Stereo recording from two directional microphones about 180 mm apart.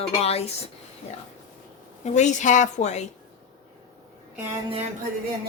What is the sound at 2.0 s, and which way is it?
A woman's voice, 40° left (ahead or behind).